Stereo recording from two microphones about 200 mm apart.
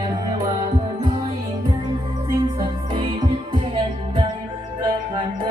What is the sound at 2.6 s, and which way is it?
Music, 25° right (ahead or behind).